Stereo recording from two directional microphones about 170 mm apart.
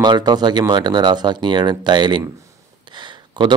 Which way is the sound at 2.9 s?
25° right (ahead or behind).